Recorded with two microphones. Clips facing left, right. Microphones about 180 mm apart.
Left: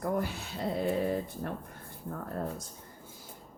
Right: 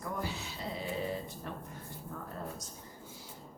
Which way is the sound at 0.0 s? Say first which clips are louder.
Left 6 dB; 55° left (ahead or behind).